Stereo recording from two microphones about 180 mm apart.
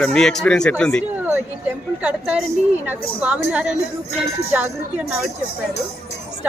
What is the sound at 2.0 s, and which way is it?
A man's voice, 5° right (ahead or behind).